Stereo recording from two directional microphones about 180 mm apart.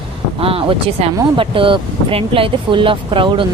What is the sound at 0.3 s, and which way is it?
Speech, 30° right (ahead or behind).